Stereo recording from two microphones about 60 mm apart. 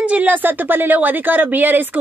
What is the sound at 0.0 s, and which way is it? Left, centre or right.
Speech, right.